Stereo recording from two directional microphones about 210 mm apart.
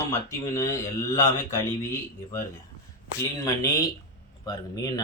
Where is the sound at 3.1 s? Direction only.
15° left (ahead or behind).